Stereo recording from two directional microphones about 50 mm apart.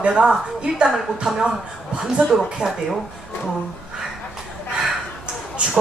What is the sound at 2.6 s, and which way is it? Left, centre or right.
Speech, centre.